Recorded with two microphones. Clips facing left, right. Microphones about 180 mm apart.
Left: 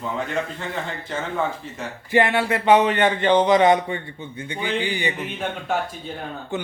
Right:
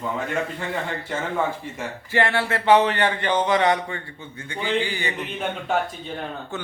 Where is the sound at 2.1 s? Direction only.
20° left (ahead or behind).